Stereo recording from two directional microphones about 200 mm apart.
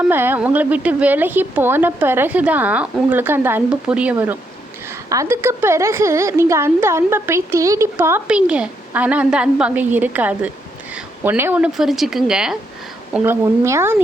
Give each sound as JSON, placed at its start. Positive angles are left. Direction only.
{"t": 0.0, "sound": "a woman's voice", "side_deg": -10}